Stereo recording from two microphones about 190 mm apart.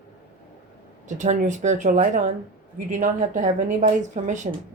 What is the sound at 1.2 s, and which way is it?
Speech, 40° right (ahead or behind).